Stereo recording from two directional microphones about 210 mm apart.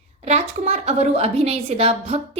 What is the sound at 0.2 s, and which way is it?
A woman's voice, 30° right (ahead or behind).